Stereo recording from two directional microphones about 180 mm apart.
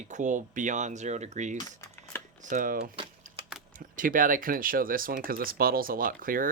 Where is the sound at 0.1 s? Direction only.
45° right (ahead or behind).